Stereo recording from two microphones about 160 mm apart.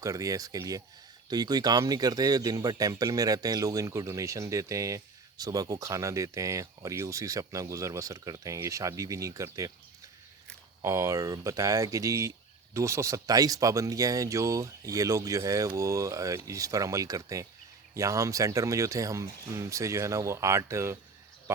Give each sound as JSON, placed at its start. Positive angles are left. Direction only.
{"t": 0.0, "sound": "speech", "side_deg": -20}
{"t": 10.8, "sound": "speech", "side_deg": -20}